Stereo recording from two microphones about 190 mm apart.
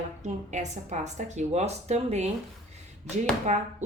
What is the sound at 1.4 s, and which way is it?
Speech, 35° right (ahead or behind).